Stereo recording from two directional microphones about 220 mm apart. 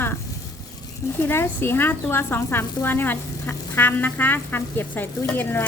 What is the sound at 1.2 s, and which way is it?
Speech, 10° left (ahead or behind).